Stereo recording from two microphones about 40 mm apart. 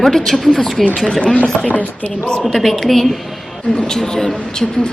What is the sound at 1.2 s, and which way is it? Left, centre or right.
Speech, left.